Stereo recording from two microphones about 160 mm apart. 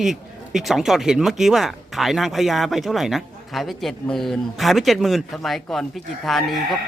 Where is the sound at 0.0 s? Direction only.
Centre (ahead or behind).